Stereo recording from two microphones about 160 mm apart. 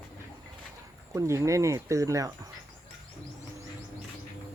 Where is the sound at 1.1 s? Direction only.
20° right (ahead or behind).